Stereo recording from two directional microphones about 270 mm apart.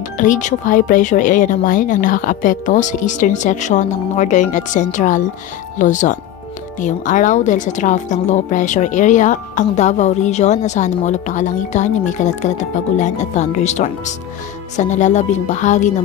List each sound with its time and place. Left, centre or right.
0.2 s a woman's voice: left